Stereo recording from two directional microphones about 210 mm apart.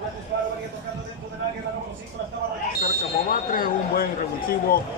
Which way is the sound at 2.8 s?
45° left (ahead or behind).